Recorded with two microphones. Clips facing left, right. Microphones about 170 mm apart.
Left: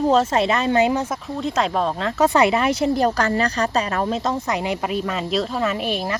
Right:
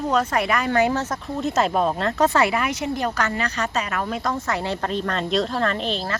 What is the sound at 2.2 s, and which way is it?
A woman's voice, 20° left (ahead or behind).